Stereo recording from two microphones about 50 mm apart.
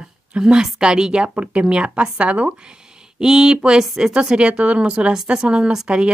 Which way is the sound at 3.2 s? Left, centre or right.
Centre.